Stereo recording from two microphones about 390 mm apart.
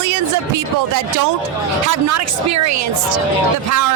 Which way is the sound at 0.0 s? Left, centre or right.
Right.